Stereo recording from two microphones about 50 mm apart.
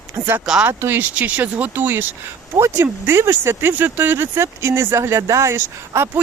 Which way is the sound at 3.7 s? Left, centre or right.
Right.